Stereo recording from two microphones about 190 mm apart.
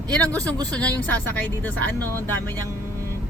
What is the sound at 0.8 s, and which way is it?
Speech, 5° left (ahead or behind).